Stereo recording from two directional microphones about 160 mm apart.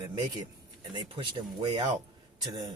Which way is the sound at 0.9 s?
30° right (ahead or behind).